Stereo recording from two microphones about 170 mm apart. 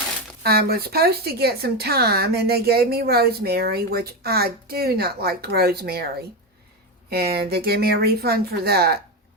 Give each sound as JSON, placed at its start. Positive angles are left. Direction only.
{"t": 0.4, "sound": "speech", "side_deg": -65}
{"t": 7.1, "sound": "speech", "side_deg": -65}